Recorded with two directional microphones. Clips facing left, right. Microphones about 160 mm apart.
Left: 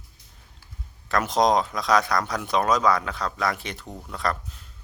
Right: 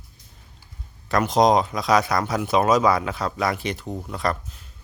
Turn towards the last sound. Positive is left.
turn(degrees=0)  # may be behind; listen again after turning